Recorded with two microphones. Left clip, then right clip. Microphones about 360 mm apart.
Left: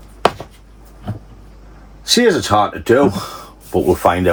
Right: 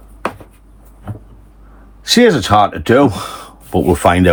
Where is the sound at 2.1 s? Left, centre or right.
Right.